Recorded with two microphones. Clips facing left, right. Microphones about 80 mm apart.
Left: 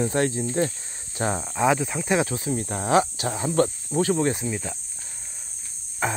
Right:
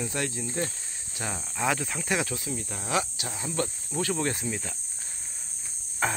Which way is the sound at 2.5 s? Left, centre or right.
Left.